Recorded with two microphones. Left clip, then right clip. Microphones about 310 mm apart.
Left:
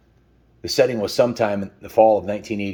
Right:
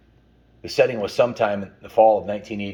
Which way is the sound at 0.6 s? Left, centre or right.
Left.